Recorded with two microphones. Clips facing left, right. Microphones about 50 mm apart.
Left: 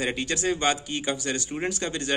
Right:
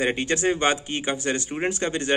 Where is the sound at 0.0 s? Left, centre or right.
Right.